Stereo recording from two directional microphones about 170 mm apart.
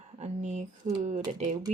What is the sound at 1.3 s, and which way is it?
Speech, 45° right (ahead or behind).